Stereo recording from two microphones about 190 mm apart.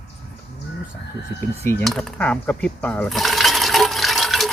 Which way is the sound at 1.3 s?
10° left (ahead or behind).